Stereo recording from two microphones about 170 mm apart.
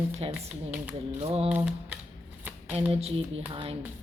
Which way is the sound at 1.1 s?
35° right (ahead or behind).